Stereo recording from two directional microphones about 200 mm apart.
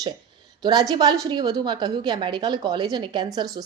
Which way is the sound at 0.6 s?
20° right (ahead or behind).